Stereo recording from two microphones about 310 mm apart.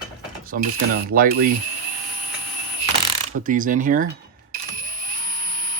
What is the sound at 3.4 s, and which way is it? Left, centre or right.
Speech, right.